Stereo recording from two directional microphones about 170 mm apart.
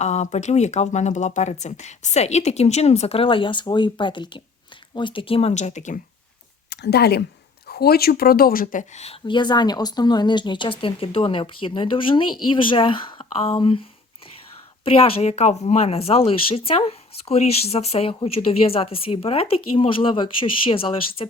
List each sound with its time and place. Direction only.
0.0 s speech: 40° left (ahead or behind)
6.7 s speech: 75° left (ahead or behind); by 13.8 s 30° left (ahead or behind)
14.8 s speech: 35° left (ahead or behind)